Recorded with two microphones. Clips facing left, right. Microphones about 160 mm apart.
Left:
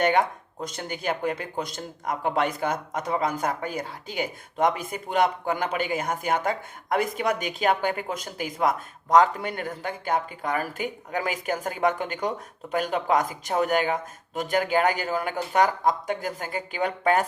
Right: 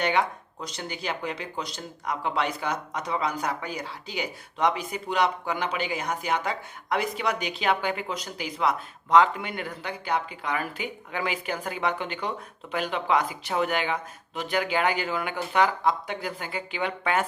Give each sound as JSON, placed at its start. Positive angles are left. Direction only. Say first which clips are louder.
{"t": 0.0, "sound": "speech", "louder": "left 3 dB", "side_deg": 50}